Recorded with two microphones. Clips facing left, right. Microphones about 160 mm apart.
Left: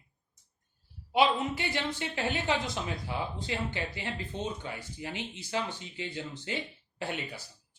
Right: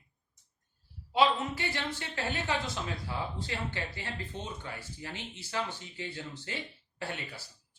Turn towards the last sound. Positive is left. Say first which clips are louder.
# left 3 dB
turn(degrees=15)  # may be behind; listen again after turning